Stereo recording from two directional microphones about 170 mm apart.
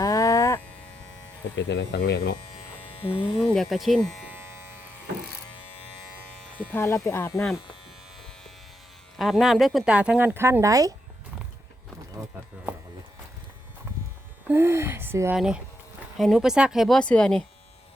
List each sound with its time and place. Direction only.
0.0 s a sound: 20° left (ahead or behind)
1.5 s speech: 85° left
3.4 s speech: 5° left (ahead or behind)
4.3 s electric shaver: 15° right (ahead or behind)
6.7 s speech: 15° left (ahead or behind)
9.1 s speech: centre (ahead or behind); by 10.9 s 20° right (ahead or behind)
14.4 s speech: 15° right (ahead or behind); by 17.4 s 5° left (ahead or behind)